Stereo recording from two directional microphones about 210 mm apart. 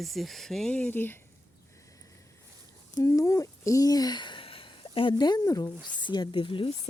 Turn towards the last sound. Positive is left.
turn(degrees=25)  # may be behind; listen again after turning